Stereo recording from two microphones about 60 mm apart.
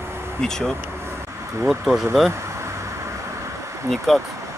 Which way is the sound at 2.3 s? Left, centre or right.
Right.